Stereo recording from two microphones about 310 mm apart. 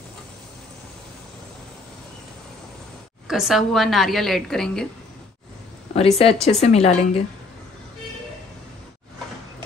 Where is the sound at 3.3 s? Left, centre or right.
Centre.